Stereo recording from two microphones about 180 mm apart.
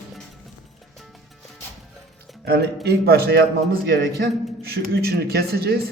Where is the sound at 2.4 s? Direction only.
60° right (ahead or behind).